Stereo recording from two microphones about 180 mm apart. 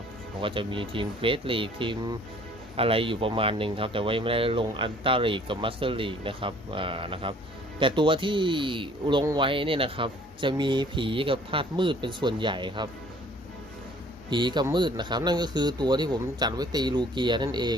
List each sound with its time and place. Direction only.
0.4 s a man's voice: 30° right (ahead or behind)
14.3 s a man's voice: 25° right (ahead or behind)